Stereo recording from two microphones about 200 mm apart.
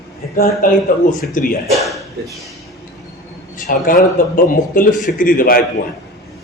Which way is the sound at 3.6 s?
45° left (ahead or behind).